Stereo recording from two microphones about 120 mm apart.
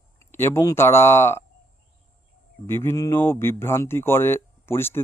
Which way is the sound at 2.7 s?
20° left (ahead or behind).